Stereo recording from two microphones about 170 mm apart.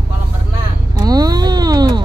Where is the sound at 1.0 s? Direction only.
20° right (ahead or behind).